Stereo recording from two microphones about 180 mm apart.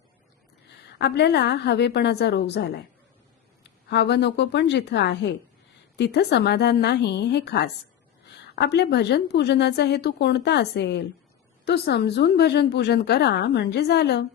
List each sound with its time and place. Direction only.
0.9 s a woman's voice: 70° left (ahead or behind)